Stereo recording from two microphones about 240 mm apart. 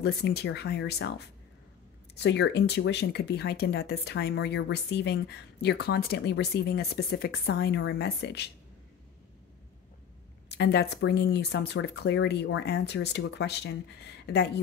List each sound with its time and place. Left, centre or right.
0.0 s speech: left
10.5 s speech: left